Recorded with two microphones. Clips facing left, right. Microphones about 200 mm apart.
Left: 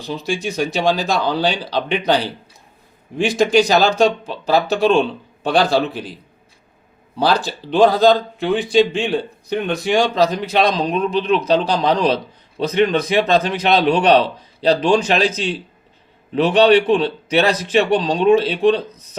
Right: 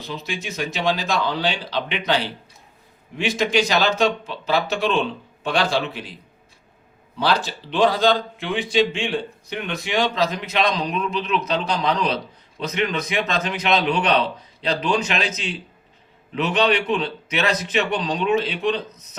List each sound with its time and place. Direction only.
0.9 s a man's voice: 40° left (ahead or behind)
3.2 s a man's voice: 45° left (ahead or behind)
7.3 s a man's voice: 40° left (ahead or behind)